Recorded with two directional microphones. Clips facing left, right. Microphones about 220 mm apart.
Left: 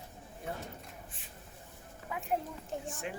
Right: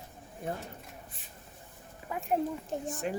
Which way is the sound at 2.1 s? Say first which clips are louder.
Right 5 dB; 45° right (ahead or behind).